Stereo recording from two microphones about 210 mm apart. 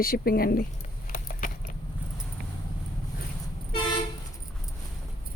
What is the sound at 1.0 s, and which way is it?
Keys jangling, 40° left (ahead or behind).